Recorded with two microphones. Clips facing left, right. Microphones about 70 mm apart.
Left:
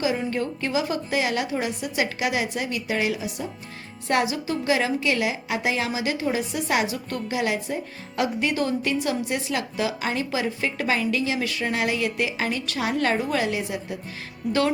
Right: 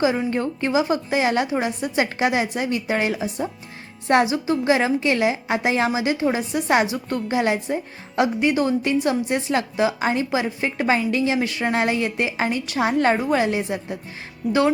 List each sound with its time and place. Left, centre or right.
0.3 s a woman's voice: right